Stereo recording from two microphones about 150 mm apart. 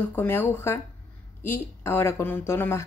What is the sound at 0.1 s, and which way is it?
Speech, 15° left (ahead or behind).